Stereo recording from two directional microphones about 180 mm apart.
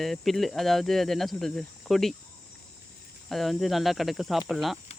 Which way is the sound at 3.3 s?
Centre (ahead or behind).